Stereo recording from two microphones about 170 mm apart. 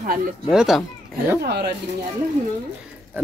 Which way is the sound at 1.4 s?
70° right (ahead or behind).